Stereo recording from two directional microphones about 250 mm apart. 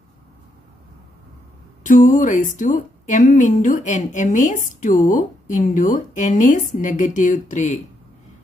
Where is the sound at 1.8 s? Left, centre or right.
Left.